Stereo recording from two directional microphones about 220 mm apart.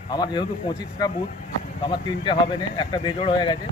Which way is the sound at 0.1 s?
20° left (ahead or behind).